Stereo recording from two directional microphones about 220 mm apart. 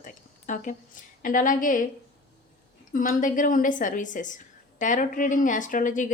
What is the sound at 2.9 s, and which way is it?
Speech, 40° left (ahead or behind).